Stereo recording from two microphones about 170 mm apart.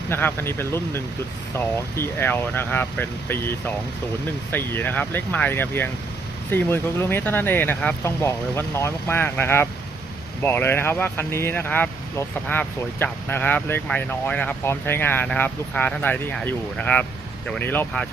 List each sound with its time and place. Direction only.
0.1 s speech: 10° left (ahead or behind)
4.5 s speech: 10° left (ahead or behind)